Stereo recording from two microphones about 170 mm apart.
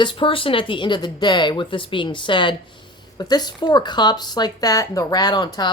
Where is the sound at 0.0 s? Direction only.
30° left (ahead or behind).